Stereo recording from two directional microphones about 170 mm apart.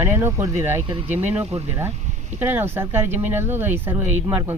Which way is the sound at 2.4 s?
10° right (ahead or behind).